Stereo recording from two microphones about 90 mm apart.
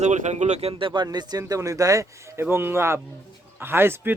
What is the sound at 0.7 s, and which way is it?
Speech, 70° right (ahead or behind).